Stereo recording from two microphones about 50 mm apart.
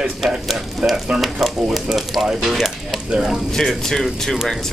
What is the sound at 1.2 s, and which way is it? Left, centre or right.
Speech, centre.